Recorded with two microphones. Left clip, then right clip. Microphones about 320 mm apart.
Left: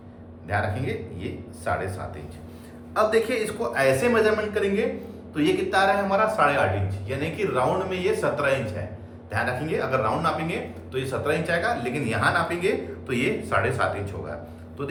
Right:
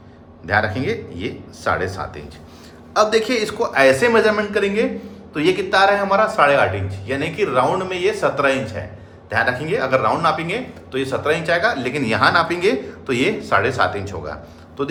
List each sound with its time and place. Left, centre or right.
0.4 s a man's voice: right
2.9 s a man's voice: centre